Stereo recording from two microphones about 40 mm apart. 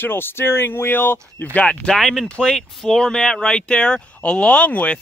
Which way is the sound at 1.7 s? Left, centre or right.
Left.